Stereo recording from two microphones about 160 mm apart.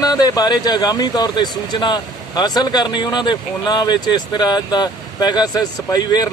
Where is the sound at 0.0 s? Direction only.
25° left (ahead or behind).